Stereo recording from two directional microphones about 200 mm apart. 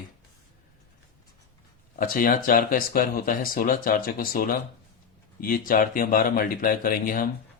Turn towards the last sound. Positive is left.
turn(degrees=45)  # may be behind; listen again after turning